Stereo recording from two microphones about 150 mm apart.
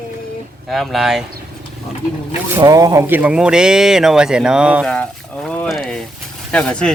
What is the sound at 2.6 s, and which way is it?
Speech, 25° right (ahead or behind).